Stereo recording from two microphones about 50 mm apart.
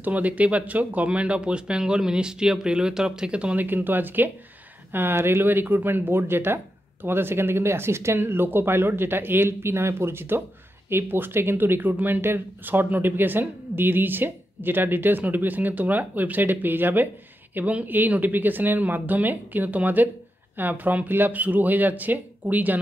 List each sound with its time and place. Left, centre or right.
0.0 s speech: right
3.5 s speech: right
4.9 s speech: right
17.6 s speech: right
17.8 s speech: right